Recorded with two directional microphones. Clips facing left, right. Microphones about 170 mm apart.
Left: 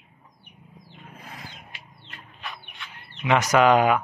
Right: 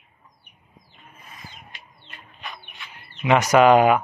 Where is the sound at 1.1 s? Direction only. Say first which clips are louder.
Left 5 dB; 75° left (ahead or behind).